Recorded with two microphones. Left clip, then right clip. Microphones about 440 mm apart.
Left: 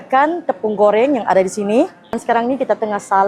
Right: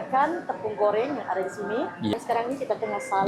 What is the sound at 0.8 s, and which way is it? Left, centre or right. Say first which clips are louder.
Speech: left 12 dB; left.